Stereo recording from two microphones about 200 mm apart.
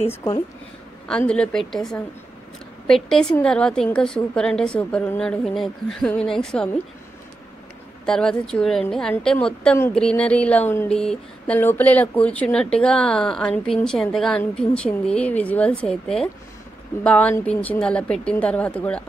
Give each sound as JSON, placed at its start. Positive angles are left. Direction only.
{"t": 0.1, "sound": "speech", "side_deg": 15}
{"t": 1.0, "sound": "a woman's voice", "side_deg": 5}
{"t": 8.0, "sound": "a woman's voice", "side_deg": 5}